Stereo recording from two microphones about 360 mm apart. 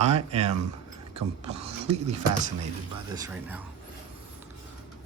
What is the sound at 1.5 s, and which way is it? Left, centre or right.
Speech, centre.